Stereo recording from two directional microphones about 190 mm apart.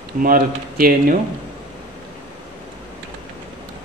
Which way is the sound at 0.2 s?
50° right (ahead or behind).